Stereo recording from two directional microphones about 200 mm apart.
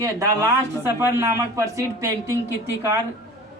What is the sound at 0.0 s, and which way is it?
A man's voice, 15° right (ahead or behind).